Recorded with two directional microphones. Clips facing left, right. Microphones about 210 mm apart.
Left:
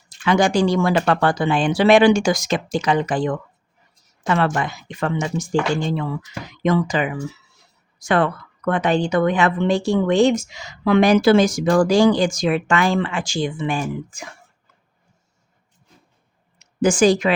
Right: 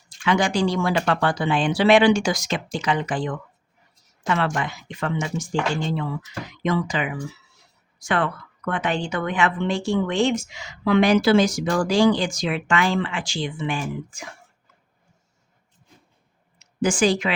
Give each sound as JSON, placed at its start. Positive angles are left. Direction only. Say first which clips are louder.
{"t": 0.3, "sound": "speech", "louder": "left 4 dB", "side_deg": 45}
{"t": 4.5, "sound": "speech", "louder": "left 3 dB", "side_deg": 40}
{"t": 16.6, "sound": "speech", "louder": "left 5 dB", "side_deg": 45}